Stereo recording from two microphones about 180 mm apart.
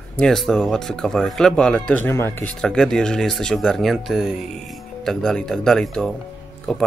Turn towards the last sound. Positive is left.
turn(degrees=5)  # may be behind; listen again after turning